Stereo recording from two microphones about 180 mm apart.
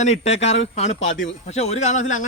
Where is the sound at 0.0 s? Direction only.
40° left (ahead or behind).